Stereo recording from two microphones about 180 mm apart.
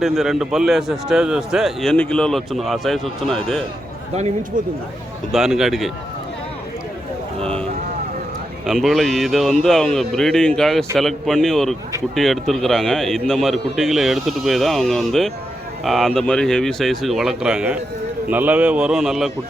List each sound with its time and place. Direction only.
0.0 s a man's voice: centre (ahead or behind)
4.1 s speech: 40° right (ahead or behind)
5.3 s a man's voice: centre (ahead or behind)
8.6 s a man's voice: centre (ahead or behind)